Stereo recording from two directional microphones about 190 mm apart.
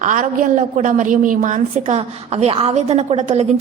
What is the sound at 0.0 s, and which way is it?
A woman's voice, 45° right (ahead or behind).